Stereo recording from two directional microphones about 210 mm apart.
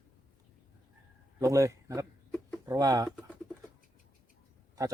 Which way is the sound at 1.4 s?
15° right (ahead or behind).